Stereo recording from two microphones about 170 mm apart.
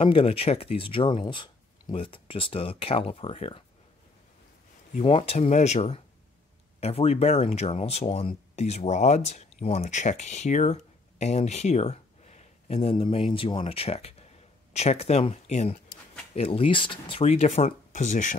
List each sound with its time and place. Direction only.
0.0 s speech: 35° left (ahead or behind)
4.9 s speech: 35° left (ahead or behind)